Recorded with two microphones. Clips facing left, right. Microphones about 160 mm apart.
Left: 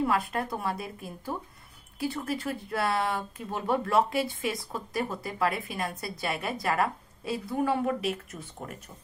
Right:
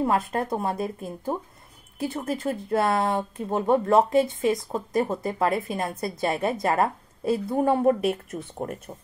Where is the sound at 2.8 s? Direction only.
45° right (ahead or behind).